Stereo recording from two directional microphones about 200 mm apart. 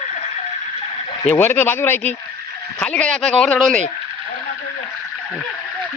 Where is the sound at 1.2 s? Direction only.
10° left (ahead or behind).